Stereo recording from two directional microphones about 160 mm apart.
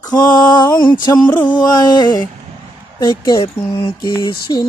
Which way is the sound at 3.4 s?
35° left (ahead or behind).